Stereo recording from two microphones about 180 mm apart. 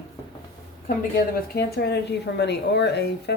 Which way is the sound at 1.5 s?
65° left (ahead or behind).